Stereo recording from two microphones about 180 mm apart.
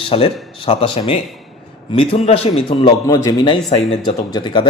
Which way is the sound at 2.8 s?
25° left (ahead or behind).